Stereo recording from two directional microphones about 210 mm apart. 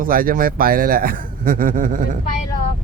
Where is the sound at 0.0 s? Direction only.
40° right (ahead or behind).